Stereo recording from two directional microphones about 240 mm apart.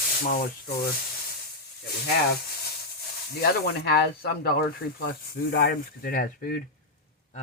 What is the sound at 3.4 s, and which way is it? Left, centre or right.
Speech, left.